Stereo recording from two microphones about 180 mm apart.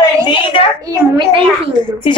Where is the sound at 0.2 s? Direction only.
30° left (ahead or behind).